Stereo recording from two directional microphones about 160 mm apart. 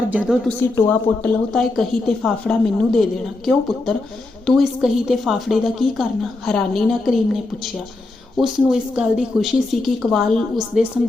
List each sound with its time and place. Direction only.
0.1 s speech: 10° right (ahead or behind)
0.8 s speech: 10° left (ahead or behind)